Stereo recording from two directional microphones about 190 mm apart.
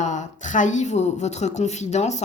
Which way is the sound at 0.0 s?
40° left (ahead or behind).